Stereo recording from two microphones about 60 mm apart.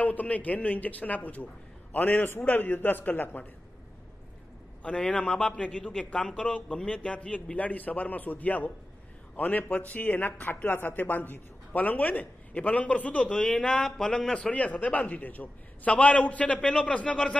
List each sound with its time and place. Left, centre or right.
0.0 s a man's voice: left
4.8 s speech: centre
13.3 s a man's voice: centre
14.5 s speech: left